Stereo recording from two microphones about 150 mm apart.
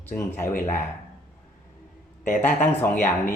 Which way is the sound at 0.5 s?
60° left (ahead or behind).